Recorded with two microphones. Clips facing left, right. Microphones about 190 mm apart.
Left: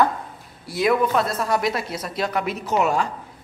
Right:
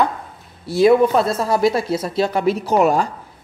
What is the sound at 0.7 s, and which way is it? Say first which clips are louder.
Speech: right 7 dB; 30° right (ahead or behind).